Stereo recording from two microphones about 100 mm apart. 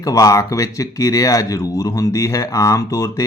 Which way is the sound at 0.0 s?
35° left (ahead or behind).